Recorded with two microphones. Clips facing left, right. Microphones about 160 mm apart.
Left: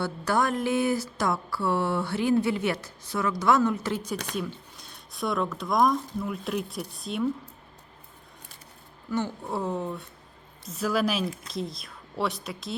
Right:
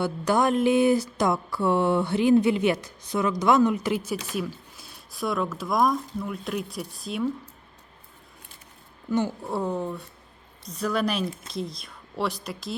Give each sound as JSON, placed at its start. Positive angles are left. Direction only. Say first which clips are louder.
{"t": 0.0, "sound": "a woman's voice", "louder": "right 3 dB", "side_deg": -20}
{"t": 9.4, "sound": "a woman's voice", "louder": "right 2 dB", "side_deg": 0}